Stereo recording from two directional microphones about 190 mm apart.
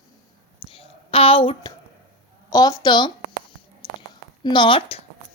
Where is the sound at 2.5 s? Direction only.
20° left (ahead or behind).